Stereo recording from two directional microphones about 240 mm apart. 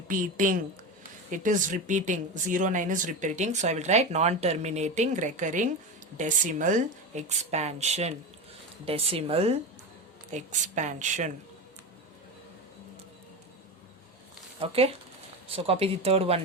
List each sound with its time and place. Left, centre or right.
0.1 s speech: right
14.6 s speech: right